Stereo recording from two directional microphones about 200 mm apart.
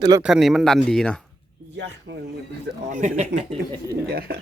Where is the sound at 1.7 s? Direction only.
60° right (ahead or behind).